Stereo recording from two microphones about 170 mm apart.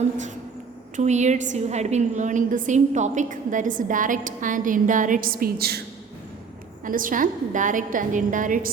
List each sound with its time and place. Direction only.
0.9 s a woman's voice: 45° right (ahead or behind); by 5.8 s 65° right (ahead or behind)
6.8 s a woman's voice: 55° right (ahead or behind)